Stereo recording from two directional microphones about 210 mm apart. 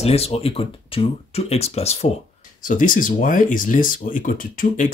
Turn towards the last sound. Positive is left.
turn(degrees=40)  # may be behind; listen again after turning